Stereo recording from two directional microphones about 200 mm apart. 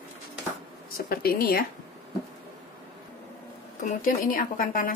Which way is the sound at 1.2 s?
50° left (ahead or behind).